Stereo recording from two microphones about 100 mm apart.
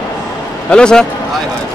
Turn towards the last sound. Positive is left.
turn(degrees=10)  # may be behind; listen again after turning